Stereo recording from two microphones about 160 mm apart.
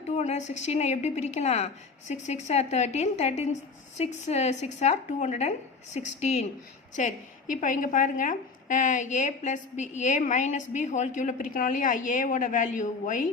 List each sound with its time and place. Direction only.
0.2 s a woman's voice: 45° left (ahead or behind)